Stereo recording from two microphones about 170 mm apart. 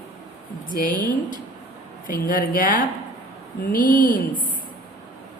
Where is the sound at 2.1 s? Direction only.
55° left (ahead or behind).